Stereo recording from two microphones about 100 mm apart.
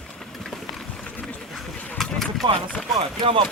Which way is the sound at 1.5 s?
Centre (ahead or behind).